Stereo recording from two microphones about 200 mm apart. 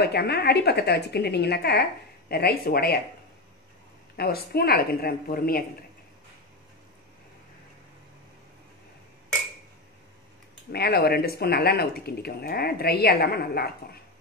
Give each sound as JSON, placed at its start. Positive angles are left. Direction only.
{"t": 0.0, "sound": "speech", "side_deg": 55}
{"t": 4.2, "sound": "speech", "side_deg": 50}
{"t": 10.7, "sound": "speech", "side_deg": 50}